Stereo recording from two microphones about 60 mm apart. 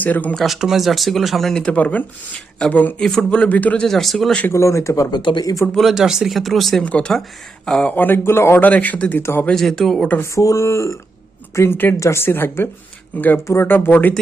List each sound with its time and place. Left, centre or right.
0.0 s speech: left
0.3 s speech: centre
1.6 s speech: left
3.8 s speech: centre
4.5 s speech: left
5.9 s speech: centre
6.8 s speech: left
7.9 s speech: left
8.5 s speech: left
9.5 s speech: centre
10.3 s speech: left
12.2 s speech: left